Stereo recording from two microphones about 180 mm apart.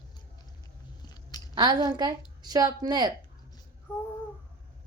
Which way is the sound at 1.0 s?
20° left (ahead or behind).